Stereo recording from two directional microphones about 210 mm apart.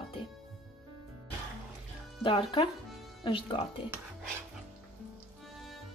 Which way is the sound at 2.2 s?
25° left (ahead or behind).